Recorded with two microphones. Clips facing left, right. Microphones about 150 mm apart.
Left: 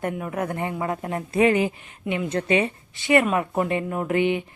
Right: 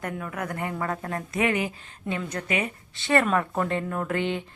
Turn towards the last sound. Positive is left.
turn(degrees=15)  # may be behind; listen again after turning